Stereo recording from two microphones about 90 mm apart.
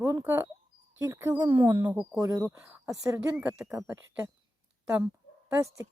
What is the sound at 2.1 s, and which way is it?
Speech, 45° right (ahead or behind).